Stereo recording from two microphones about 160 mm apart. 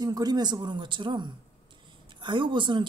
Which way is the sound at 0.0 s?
25° right (ahead or behind).